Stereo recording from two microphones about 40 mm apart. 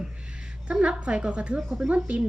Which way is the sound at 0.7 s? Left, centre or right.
Right.